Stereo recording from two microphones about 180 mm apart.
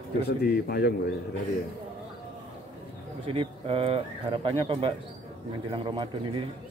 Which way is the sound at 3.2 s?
30° right (ahead or behind).